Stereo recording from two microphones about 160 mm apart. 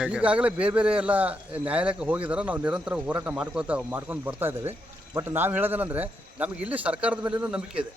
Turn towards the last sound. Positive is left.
turn(degrees=-10)  # may be behind; listen again after turning